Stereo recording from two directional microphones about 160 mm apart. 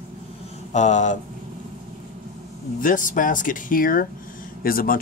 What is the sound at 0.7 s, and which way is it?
Speech, 45° left (ahead or behind).